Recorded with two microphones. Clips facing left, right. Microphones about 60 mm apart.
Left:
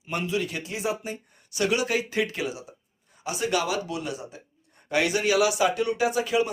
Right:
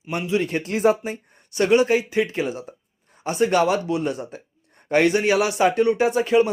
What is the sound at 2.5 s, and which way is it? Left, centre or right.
Speech, right.